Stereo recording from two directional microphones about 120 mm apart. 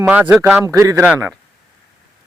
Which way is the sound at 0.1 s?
15° right (ahead or behind).